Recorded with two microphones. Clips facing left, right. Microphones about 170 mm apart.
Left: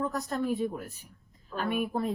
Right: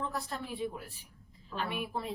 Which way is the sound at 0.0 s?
45° left (ahead or behind).